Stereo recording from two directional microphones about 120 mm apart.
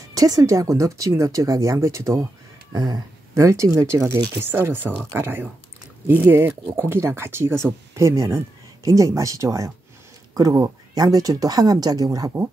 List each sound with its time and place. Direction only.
0.1 s speech: 30° right (ahead or behind)